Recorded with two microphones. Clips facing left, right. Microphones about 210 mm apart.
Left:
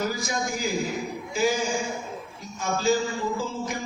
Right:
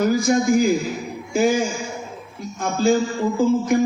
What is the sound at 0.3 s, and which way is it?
A man's voice, 55° right (ahead or behind).